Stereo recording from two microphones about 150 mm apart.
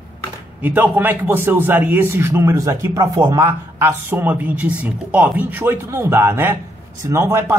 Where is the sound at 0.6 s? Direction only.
10° right (ahead or behind).